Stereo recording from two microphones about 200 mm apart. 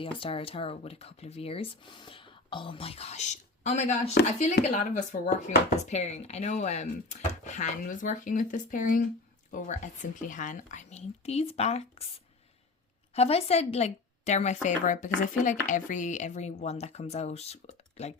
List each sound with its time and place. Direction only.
0.0 s speech: 25° left (ahead or behind)
13.1 s speech: 30° left (ahead or behind)